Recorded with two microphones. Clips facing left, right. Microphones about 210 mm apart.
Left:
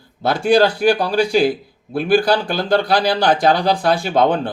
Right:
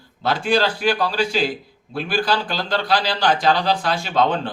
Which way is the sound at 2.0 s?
55° left (ahead or behind).